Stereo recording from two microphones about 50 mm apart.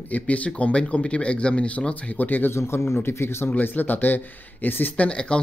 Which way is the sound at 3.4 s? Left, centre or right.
Left.